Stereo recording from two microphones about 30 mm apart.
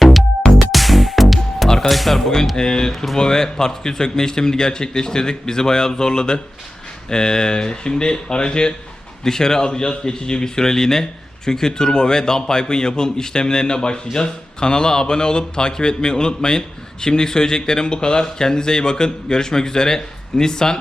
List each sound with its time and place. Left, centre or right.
0.0 s music: centre
1.9 s a man's voice: centre; by 20.7 s left